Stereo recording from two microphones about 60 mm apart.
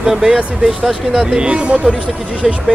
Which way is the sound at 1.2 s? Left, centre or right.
Centre.